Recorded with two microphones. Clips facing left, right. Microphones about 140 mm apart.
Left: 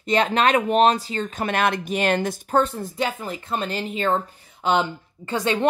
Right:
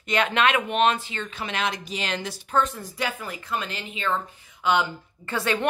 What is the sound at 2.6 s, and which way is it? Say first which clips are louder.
Speech: left 2 dB; 30° left (ahead or behind).